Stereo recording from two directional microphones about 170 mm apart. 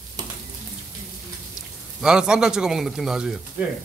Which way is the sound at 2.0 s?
5° right (ahead or behind).